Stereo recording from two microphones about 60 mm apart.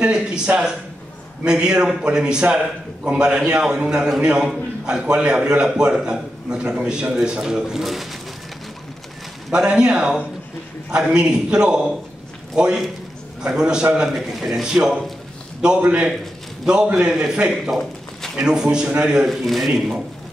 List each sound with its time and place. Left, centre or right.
0.0 s a man's voice: centre
9.5 s a man's voice: centre
16.6 s speech: centre
18.4 s a man's voice: centre
19.2 s a man's voice: centre